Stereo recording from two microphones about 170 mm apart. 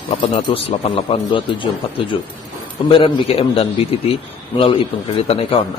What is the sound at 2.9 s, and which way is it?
A man's voice, 35° left (ahead or behind).